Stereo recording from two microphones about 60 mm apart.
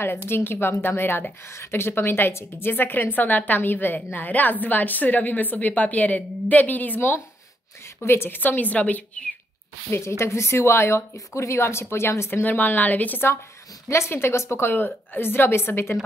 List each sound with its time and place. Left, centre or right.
0.3 s a woman's voice: left
7.0 s a woman's voice: left
9.8 s a woman's voice: left
12.4 s a woman's voice: left
13.8 s a woman's voice: left
14.7 s a woman's voice: left